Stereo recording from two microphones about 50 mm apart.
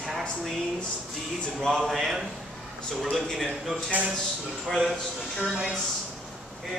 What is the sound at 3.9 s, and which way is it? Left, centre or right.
Speech, right.